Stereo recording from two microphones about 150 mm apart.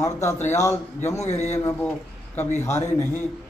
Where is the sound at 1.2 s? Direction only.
50° left (ahead or behind).